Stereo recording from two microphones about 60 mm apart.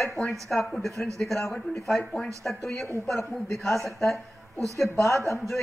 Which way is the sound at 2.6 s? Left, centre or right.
Left.